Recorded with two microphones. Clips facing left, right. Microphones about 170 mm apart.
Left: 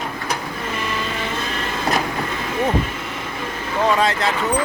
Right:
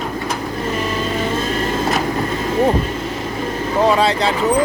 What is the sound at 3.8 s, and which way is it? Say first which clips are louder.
Speech: right 3 dB; 35° right (ahead or behind).